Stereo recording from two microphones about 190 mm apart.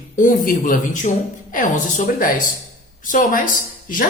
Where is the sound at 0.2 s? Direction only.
45° left (ahead or behind).